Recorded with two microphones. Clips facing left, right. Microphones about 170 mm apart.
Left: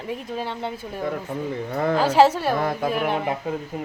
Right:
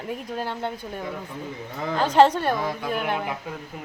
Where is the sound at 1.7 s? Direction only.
55° left (ahead or behind).